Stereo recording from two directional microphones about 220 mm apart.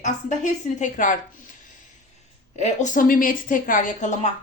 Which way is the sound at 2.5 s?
35° left (ahead or behind).